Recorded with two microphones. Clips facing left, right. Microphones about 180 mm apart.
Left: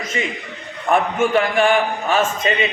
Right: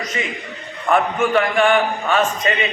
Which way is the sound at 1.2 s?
25° left (ahead or behind).